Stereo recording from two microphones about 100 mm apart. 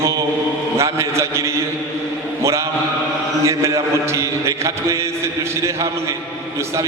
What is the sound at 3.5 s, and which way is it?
A man's voice, 30° right (ahead or behind).